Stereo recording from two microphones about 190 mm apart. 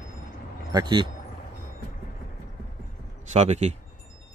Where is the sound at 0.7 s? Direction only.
20° right (ahead or behind).